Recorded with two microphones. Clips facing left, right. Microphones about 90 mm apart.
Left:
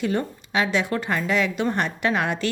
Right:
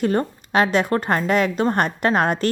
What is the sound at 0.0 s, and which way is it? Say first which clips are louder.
A woman's voice: right 4 dB; 45° right (ahead or behind).